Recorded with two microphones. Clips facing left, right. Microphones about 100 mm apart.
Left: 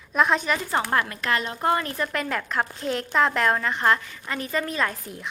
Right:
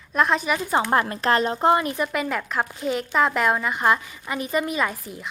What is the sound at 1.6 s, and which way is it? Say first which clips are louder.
A woman's voice: right 4 dB; 20° right (ahead or behind).